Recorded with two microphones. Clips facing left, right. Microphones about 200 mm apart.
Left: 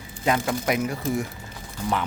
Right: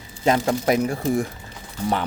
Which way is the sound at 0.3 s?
35° right (ahead or behind).